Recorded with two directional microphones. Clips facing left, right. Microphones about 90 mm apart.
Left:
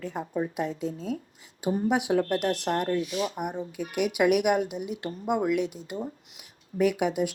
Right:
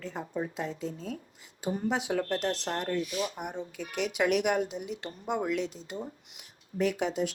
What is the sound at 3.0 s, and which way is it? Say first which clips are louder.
Speech: left 3 dB; 35° left (ahead or behind).